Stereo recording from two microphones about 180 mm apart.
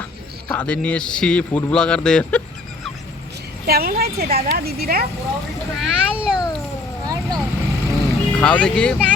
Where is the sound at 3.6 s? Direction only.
55° right (ahead or behind).